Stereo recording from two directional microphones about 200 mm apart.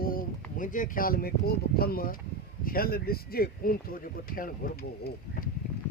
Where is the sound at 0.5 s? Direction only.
40° left (ahead or behind).